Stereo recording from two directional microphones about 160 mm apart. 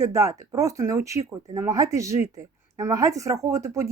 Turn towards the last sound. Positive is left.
turn(degrees=-20)  # may be behind; listen again after turning